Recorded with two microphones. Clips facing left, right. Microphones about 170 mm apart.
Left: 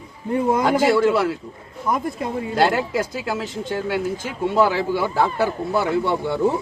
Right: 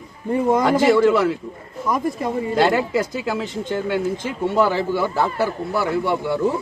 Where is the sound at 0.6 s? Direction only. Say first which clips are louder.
Right 2 dB; centre (ahead or behind).